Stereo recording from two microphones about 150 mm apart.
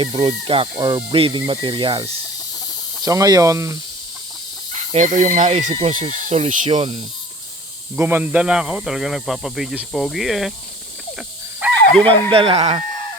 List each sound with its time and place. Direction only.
0.0 s speech: 40° right (ahead or behind)
3.0 s speech: 25° right (ahead or behind)
4.7 s speech: 55° right (ahead or behind)
5.9 s speech: 55° right (ahead or behind); by 7.0 s 40° right (ahead or behind)
7.9 s speech: 10° right (ahead or behind)
11.6 s wild animals: 10° right (ahead or behind)
11.9 s speech: 10° left (ahead or behind)
12.3 s speech: 40° right (ahead or behind)